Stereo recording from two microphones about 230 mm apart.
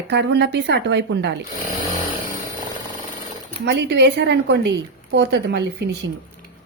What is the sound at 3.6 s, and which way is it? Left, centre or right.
Speech, right.